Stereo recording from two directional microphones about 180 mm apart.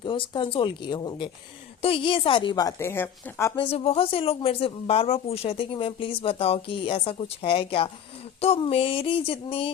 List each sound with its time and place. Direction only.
0.0 s a woman's voice: 25° left (ahead or behind); by 3.5 s 10° left (ahead or behind)
3.5 s speech: 30° left (ahead or behind)